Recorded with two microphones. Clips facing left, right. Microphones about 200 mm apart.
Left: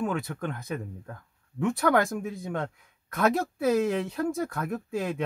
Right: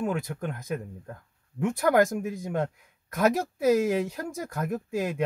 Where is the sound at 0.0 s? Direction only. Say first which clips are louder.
Even; 10° right (ahead or behind).